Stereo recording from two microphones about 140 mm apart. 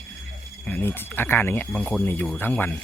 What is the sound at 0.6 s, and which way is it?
Speech, 15° left (ahead or behind).